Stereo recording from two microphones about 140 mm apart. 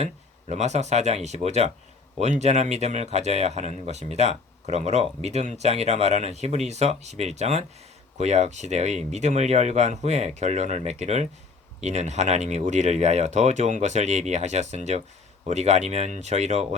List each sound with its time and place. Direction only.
0.0 s speech: 50° right (ahead or behind)